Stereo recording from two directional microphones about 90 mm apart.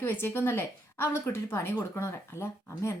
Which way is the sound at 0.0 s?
25° left (ahead or behind).